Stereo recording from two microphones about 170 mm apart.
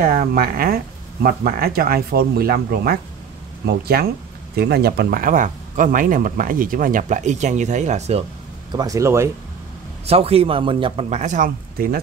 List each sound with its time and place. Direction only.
0.0 s speech: 60° right (ahead or behind); by 8.2 s 45° right (ahead or behind)
8.7 s speech: 20° right (ahead or behind)
10.0 s a man's voice: 35° right (ahead or behind); by 12.0 s 55° right (ahead or behind)